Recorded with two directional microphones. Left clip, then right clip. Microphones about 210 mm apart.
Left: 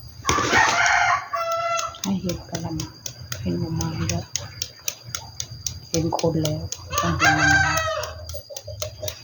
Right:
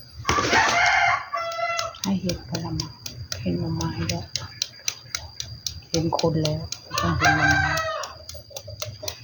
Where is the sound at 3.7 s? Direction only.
Centre (ahead or behind).